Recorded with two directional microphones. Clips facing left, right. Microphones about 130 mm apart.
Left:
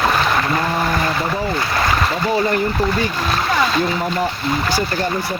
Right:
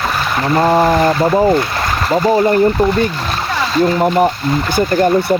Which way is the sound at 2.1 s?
40° right (ahead or behind).